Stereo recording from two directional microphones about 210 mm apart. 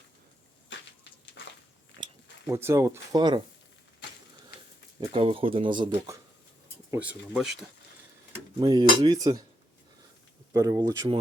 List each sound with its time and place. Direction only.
1.4 s biting: 60° left (ahead or behind)
2.5 s speech: 10° right (ahead or behind)
4.9 s speech: 25° right (ahead or behind)
6.9 s speech: 5° right (ahead or behind)
8.3 s a sound: 15° right (ahead or behind)
9.0 s speech: 20° right (ahead or behind)
10.5 s speech: 15° right (ahead or behind)